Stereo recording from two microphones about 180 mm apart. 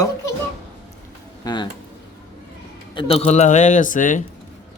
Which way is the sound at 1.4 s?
20° left (ahead or behind).